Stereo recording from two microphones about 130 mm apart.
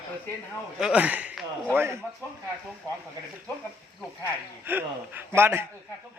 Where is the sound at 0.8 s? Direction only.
10° right (ahead or behind).